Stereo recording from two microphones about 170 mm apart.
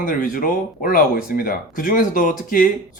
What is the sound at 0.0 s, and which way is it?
Speech, 55° left (ahead or behind).